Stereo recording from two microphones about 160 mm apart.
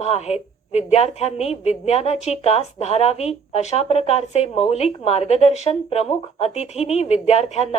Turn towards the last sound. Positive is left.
turn(degrees=40)  # may be behind; listen again after turning